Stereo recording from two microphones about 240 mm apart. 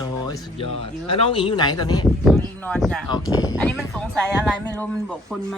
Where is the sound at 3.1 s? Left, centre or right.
Centre.